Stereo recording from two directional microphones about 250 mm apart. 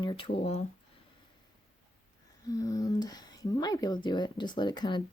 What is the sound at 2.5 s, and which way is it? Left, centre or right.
Speech, centre.